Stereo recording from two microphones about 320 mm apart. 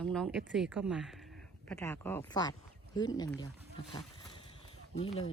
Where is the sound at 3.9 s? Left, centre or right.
Centre.